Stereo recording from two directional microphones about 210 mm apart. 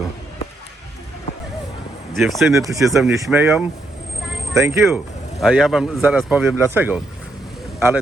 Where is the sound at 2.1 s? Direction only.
Centre (ahead or behind).